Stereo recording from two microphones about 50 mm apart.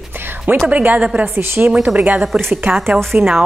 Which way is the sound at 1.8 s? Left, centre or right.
Right.